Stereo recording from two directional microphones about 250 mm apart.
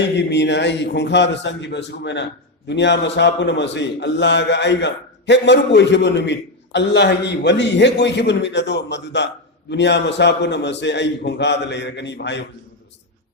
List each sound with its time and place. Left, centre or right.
0.2 s a man's voice: left